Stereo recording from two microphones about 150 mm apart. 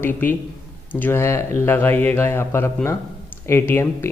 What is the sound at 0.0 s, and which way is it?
Speech, 15° left (ahead or behind).